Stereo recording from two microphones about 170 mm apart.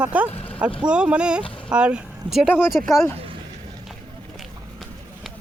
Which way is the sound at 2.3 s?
30° right (ahead or behind).